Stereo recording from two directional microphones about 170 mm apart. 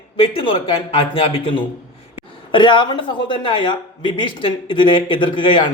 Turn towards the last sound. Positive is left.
turn(degrees=30)  # may be behind; listen again after turning